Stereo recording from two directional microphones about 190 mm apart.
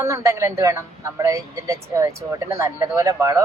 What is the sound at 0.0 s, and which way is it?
Speech, 15° right (ahead or behind).